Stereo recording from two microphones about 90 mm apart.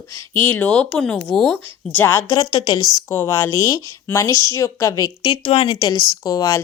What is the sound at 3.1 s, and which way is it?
Speech, 30° left (ahead or behind).